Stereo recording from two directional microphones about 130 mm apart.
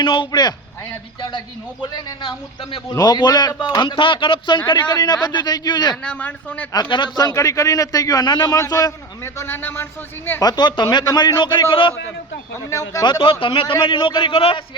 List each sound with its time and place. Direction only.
0.0 s a man's voice: 40° left (ahead or behind)
1.8 s a man's voice: 35° left (ahead or behind)
6.0 s a man's voice: 10° left (ahead or behind)
6.9 s a man's voice: 35° left (ahead or behind); by 9.8 s 15° left (ahead or behind)
10.4 s a man's voice: 35° left (ahead or behind)
12.7 s a man's voice: 30° left (ahead or behind); by 14.6 s 45° left (ahead or behind)